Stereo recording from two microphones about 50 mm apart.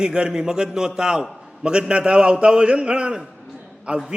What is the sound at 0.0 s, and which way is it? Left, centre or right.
A man's voice, centre.